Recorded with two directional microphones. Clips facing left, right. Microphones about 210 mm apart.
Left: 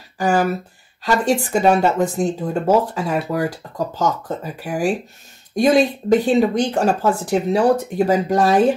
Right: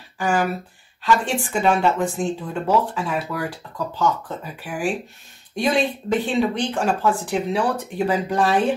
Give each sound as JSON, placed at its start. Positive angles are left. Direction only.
{"t": 0.2, "sound": "speech", "side_deg": 40}